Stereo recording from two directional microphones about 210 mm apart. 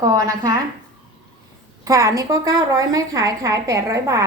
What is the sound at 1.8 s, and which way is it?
A woman's voice, 15° right (ahead or behind).